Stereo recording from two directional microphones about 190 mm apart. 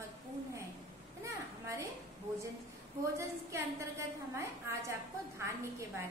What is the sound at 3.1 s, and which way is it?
A woman's voice, 15° right (ahead or behind).